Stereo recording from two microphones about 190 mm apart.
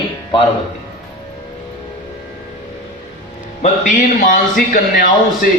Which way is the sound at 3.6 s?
40° left (ahead or behind).